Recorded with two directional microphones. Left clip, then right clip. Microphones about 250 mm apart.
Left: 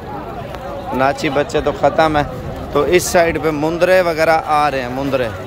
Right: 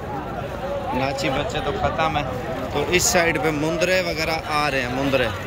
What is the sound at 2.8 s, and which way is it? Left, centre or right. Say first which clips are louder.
A man's voice: left 7 dB; centre.